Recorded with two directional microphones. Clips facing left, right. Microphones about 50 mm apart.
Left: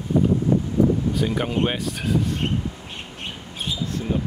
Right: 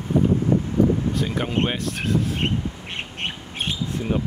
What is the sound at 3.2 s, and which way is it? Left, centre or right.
Bird, right.